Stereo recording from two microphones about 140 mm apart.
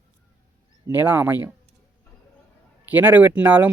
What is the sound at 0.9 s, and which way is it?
Speech, 15° right (ahead or behind).